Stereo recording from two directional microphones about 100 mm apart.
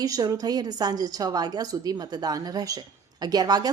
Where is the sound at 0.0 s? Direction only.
35° right (ahead or behind).